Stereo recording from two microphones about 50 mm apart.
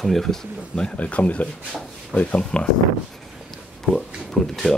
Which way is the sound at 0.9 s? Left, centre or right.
Left.